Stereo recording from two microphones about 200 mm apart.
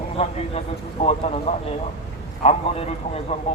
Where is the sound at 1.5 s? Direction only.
30° left (ahead or behind).